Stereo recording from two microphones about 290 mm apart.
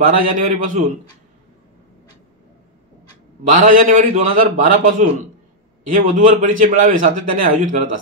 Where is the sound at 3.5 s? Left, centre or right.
Right.